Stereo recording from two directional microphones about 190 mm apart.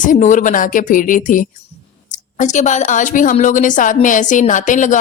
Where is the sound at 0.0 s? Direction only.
40° left (ahead or behind).